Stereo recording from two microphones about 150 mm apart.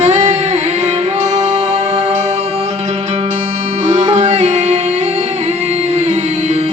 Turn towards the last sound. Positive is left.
turn(degrees=-50)  # may be behind; listen again after turning